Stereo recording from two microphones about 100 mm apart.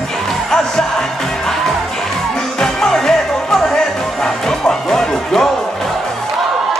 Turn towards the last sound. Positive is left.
turn(degrees=5)  # may be behind; listen again after turning